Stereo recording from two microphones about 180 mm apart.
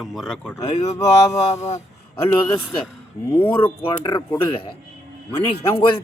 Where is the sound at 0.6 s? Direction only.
35° left (ahead or behind).